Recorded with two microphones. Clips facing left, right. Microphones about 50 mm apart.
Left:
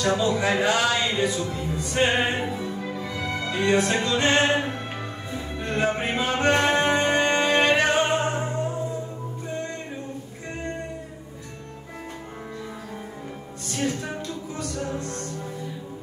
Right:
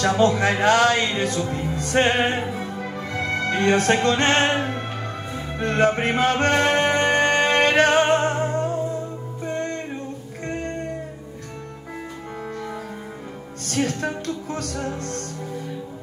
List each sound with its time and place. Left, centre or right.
0.2 s speech: right
1.5 s music: right
2.0 s speech: right
2.5 s music: right
13.7 s music: right